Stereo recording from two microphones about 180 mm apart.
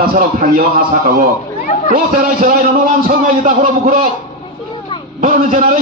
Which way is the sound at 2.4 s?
50° right (ahead or behind).